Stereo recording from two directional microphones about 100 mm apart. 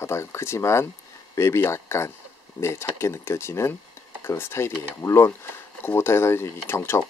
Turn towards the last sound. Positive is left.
turn(degrees=25)  # may be behind; listen again after turning